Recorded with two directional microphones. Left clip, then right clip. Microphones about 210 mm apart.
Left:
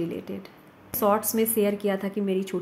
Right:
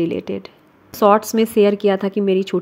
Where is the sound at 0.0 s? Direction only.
40° right (ahead or behind).